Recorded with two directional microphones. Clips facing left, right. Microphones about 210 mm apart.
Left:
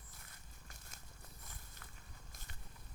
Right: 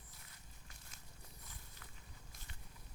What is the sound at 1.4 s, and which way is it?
Walk, 50° left (ahead or behind).